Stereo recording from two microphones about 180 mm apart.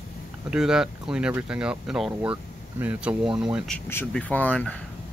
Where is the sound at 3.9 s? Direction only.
10° left (ahead or behind).